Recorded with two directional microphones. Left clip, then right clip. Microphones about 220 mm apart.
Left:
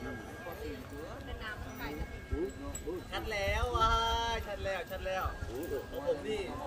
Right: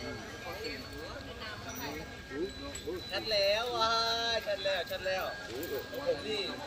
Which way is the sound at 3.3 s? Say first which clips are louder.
Right 4 dB; 35° left (ahead or behind).